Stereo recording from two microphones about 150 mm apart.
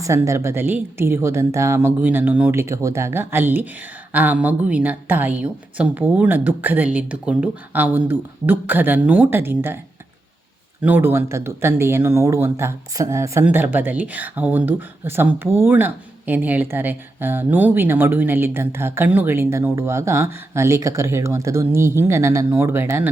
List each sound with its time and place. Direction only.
0.0 s speech: 20° right (ahead or behind)
10.8 s speech: 15° right (ahead or behind)